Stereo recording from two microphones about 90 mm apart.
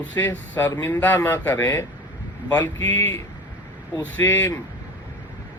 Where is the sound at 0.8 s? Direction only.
20° left (ahead or behind).